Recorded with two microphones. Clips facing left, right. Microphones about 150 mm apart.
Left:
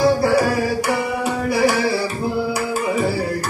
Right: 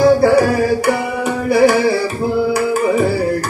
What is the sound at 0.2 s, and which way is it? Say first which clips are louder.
Music: right 5 dB; 55° right (ahead or behind).